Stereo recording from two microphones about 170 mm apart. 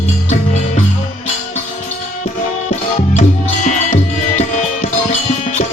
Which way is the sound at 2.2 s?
45° left (ahead or behind).